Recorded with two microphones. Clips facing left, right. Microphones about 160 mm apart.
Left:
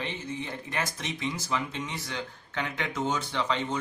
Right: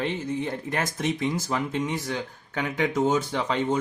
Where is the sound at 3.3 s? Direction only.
40° right (ahead or behind).